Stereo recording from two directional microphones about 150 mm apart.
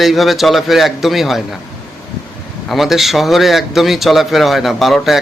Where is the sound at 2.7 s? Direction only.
Centre (ahead or behind).